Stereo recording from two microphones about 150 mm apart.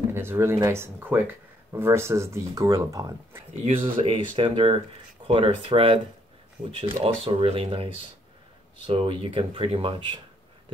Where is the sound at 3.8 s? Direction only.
35° right (ahead or behind).